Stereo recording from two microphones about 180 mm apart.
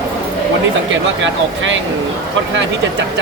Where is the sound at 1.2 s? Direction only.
90° right.